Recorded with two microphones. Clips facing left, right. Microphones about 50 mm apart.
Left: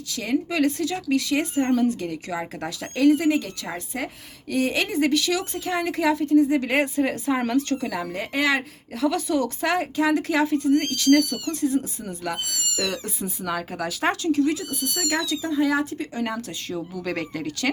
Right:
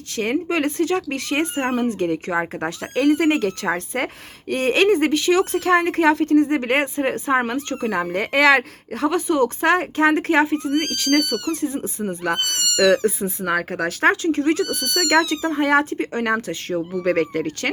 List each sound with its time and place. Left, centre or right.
0.2 s speech: right
3.0 s a woman's voice: right
5.4 s speech: right
5.8 s a woman's voice: right
8.9 s a woman's voice: right
9.1 s speech: right
10.8 s a woman's voice: right
11.2 s speech: right
11.6 s speech: right
12.4 s speech: right
13.1 s a woman's voice: right
15.4 s a woman's voice: right